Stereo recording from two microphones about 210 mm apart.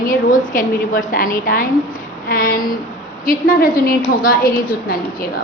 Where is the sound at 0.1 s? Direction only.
40° left (ahead or behind).